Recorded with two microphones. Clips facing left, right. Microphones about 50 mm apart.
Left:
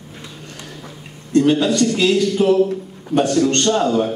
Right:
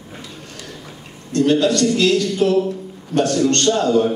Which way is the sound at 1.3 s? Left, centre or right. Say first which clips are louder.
Left 1 dB; centre.